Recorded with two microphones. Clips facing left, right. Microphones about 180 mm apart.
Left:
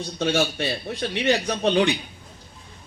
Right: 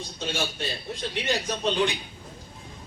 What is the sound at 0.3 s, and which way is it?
Speech, 65° left (ahead or behind).